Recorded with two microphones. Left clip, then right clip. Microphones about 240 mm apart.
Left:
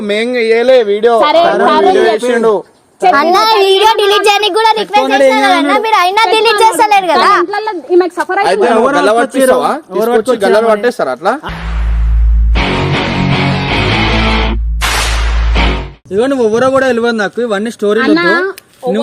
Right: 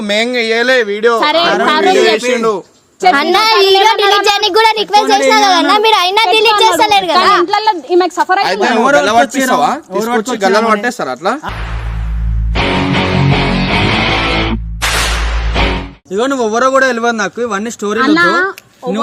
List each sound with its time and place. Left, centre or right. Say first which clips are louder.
0.0 s speech: left 1 dB; right
0.9 s a man's voice: left 3 dB; centre
1.2 s speech: left 3 dB; right
3.2 s a child's voice: left 4 dB; centre
3.7 s speech: even; centre
4.5 s speech: even; right; by 6.5 s centre
6.6 s speech: left 1 dB; centre
7.5 s speech: right 1 dB; right
12.7 s music: even; centre
16.1 s a man's voice: left 2 dB; centre
18.0 s speech: right 3 dB; right